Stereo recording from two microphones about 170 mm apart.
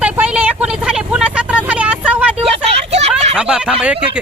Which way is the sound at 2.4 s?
40° right (ahead or behind).